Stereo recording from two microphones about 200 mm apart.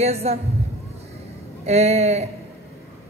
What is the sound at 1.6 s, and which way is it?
Speech, 30° right (ahead or behind).